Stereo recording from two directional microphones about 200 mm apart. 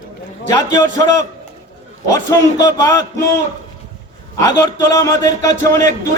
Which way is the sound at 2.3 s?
15° left (ahead or behind).